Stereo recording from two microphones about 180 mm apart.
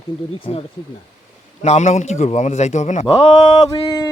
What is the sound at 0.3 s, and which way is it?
Speech, 30° left (ahead or behind).